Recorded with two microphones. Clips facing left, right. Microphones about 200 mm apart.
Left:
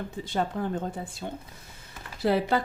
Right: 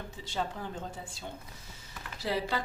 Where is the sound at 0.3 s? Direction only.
55° left (ahead or behind).